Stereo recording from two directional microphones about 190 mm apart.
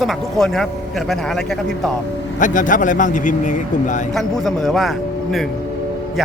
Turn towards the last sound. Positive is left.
turn(degrees=0)  # may be behind; listen again after turning